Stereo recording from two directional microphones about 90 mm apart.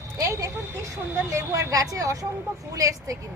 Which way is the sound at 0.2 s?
35° right (ahead or behind).